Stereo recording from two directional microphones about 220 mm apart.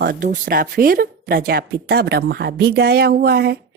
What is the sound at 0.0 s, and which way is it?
A woman's voice, 45° right (ahead or behind).